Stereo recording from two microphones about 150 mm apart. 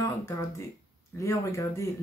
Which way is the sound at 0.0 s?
20° left (ahead or behind).